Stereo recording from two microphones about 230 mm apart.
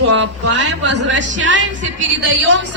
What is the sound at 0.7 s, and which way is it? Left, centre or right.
A woman's voice, right.